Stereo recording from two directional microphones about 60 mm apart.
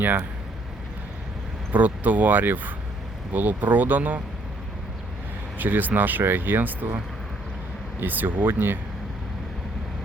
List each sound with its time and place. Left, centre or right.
0.0 s speech: right
1.7 s speech: right
5.5 s speech: right
8.0 s speech: right